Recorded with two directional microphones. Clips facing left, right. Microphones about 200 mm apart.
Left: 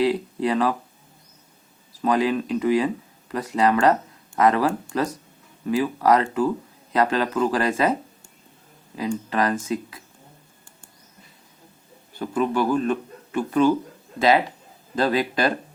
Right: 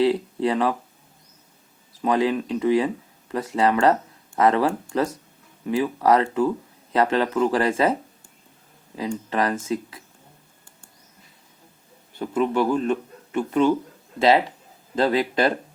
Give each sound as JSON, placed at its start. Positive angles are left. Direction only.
{"t": 0.0, "sound": "speech", "side_deg": -25}
{"t": 2.0, "sound": "speech", "side_deg": -25}
{"t": 9.0, "sound": "speech", "side_deg": -25}
{"t": 12.2, "sound": "speech", "side_deg": -25}